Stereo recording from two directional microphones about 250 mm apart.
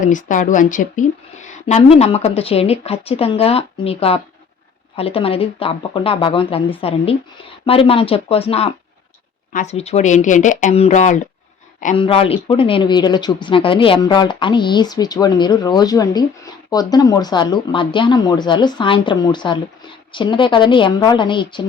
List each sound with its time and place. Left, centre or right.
0.0 s a woman's voice: left